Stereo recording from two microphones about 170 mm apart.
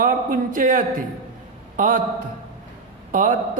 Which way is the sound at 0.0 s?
55° right (ahead or behind).